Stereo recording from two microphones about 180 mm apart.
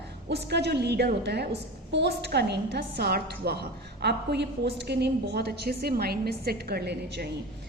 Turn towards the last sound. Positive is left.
turn(degrees=-65)  # may be behind; listen again after turning